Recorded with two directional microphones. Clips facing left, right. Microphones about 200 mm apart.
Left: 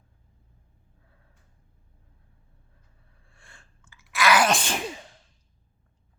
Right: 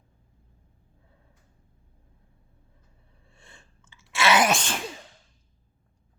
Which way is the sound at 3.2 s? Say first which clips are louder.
Right 2 dB; 20° right (ahead or behind).